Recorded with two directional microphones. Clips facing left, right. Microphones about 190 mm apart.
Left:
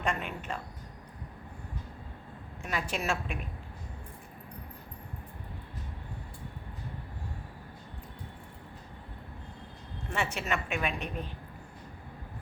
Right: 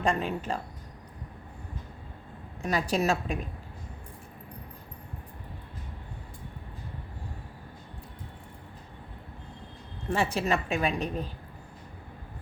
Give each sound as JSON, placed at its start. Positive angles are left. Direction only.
{"t": 0.0, "sound": "a woman's voice", "side_deg": -35}
{"t": 2.6, "sound": "a woman's voice", "side_deg": -35}
{"t": 10.1, "sound": "a woman's voice", "side_deg": -35}